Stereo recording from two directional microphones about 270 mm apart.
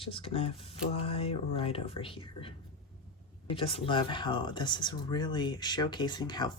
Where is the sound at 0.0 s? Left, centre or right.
Centre.